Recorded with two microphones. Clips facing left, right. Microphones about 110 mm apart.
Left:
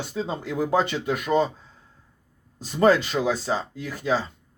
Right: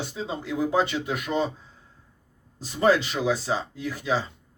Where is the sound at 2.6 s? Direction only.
45° left (ahead or behind).